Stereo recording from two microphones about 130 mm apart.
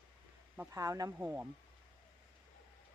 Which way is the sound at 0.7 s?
25° right (ahead or behind).